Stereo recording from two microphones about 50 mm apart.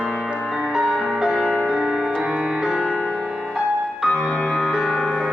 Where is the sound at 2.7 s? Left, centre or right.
Centre.